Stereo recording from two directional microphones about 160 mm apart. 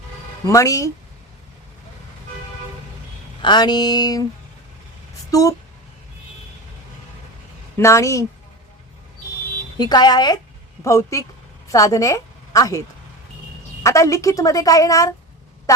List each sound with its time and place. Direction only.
0.4 s a woman's voice: 20° left (ahead or behind)
3.4 s a woman's voice: 25° left (ahead or behind)
5.3 s a woman's voice: 20° left (ahead or behind)
7.8 s a woman's voice: 20° left (ahead or behind)
9.7 s a woman's voice: 25° left (ahead or behind)
13.8 s a woman's voice: 20° left (ahead or behind)